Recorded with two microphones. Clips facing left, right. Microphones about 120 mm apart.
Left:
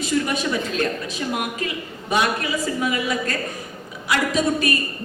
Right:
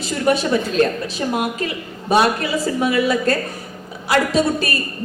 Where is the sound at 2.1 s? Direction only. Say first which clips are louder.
Right 5 dB; 30° right (ahead or behind).